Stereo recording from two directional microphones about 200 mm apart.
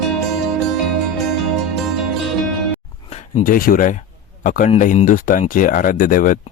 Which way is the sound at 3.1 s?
45° left (ahead or behind).